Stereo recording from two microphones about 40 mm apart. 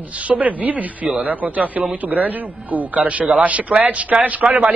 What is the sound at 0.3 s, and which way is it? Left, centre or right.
Speech, right.